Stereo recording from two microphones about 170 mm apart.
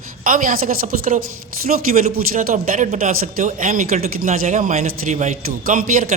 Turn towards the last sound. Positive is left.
turn(degrees=-50)  # may be behind; listen again after turning